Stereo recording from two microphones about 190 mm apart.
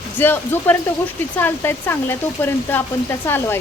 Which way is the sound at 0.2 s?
10° left (ahead or behind).